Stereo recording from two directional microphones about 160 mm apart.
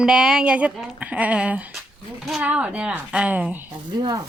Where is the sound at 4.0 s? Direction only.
25° right (ahead or behind).